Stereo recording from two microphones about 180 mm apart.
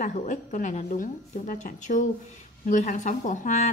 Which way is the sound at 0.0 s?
40° left (ahead or behind).